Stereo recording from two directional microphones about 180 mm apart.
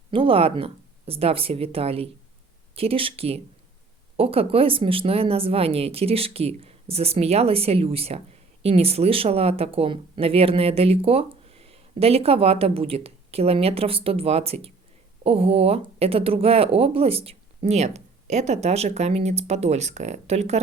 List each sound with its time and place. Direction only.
0.1 s speech: 30° right (ahead or behind)